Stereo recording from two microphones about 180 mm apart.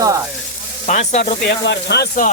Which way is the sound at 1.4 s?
70° left (ahead or behind).